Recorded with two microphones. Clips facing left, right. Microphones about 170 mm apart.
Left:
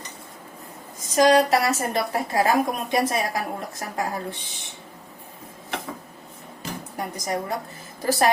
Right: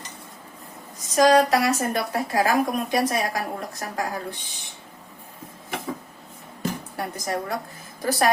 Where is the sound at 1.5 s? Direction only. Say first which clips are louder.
Even; 30° left (ahead or behind).